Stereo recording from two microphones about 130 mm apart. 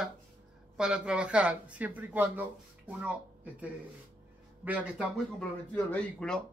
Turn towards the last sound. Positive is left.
turn(degrees=5)  # may be behind; listen again after turning